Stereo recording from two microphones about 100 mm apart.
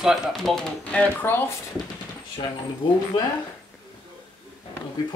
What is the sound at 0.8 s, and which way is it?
Speech, 15° left (ahead or behind).